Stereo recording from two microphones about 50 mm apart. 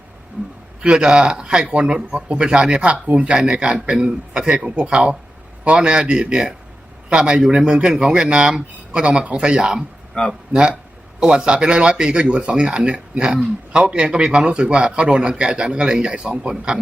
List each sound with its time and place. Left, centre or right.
0.8 s speech: centre
10.2 s speech: centre
10.5 s speech: centre